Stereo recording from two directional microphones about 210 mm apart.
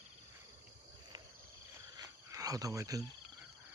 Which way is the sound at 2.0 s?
15° right (ahead or behind).